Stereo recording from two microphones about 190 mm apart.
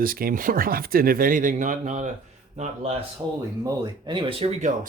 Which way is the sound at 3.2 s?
25° right (ahead or behind).